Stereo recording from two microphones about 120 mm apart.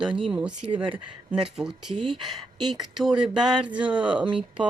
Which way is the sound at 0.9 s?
10° right (ahead or behind).